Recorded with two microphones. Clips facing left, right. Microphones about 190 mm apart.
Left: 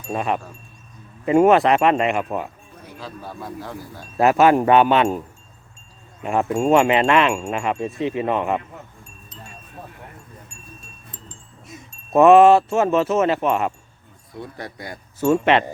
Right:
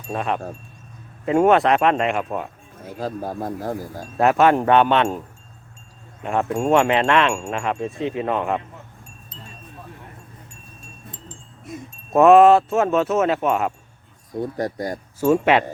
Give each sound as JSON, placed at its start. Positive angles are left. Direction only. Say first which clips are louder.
{"t": 0.1, "sound": "speech", "louder": "left 1 dB", "side_deg": 5}
{"t": 2.8, "sound": "speech", "louder": "right 8 dB", "side_deg": -45}
{"t": 4.2, "sound": "speech", "louder": "left 1 dB", "side_deg": 5}
{"t": 6.2, "sound": "speech", "louder": "left 2 dB", "side_deg": 0}
{"t": 12.1, "sound": "speech", "louder": "even", "side_deg": 0}
{"t": 14.3, "sound": "speech", "louder": "right 9 dB", "side_deg": -45}
{"t": 15.2, "sound": "speech", "louder": "even", "side_deg": -5}